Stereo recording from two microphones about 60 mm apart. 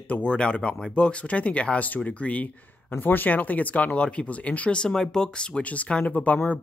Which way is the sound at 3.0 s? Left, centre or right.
Left.